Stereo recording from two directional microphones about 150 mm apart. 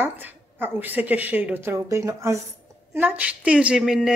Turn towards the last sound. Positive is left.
turn(degrees=-5)  # may be behind; listen again after turning